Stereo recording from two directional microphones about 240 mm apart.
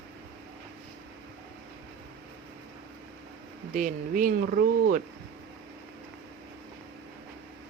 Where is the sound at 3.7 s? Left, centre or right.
Right.